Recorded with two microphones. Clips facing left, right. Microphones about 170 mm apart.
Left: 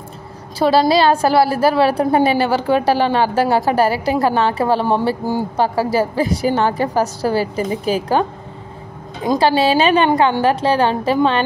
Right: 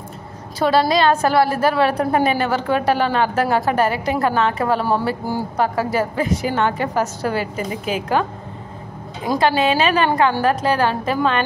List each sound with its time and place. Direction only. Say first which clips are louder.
0.6 s a woman's voice: left 3 dB; 30° left (ahead or behind)
9.4 s a woman's voice: left 2 dB; 35° left (ahead or behind)